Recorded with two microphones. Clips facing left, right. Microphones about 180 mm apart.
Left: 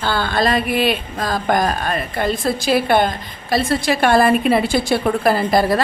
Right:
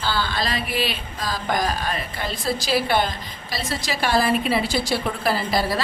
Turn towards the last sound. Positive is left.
turn(degrees=50)  # may be behind; listen again after turning